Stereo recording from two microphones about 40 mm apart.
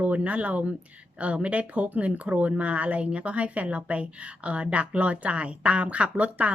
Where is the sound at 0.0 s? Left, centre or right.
Right.